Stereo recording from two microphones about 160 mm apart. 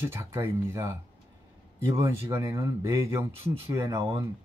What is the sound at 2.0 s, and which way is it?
Speech, 15° right (ahead or behind).